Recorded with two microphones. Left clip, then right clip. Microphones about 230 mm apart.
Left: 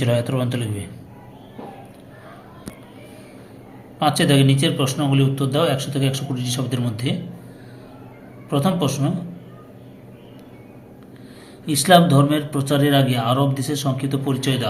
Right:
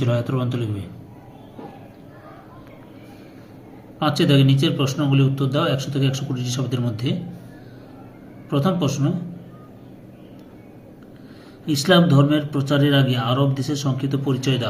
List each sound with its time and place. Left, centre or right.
0.0 s speech: centre
4.0 s speech: centre
8.4 s speech: centre
11.6 s speech: centre